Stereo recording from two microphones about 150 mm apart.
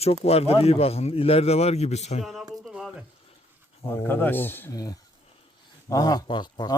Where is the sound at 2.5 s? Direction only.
Centre (ahead or behind).